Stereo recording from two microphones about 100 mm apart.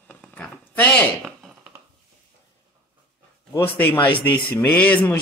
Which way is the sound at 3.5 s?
20° left (ahead or behind).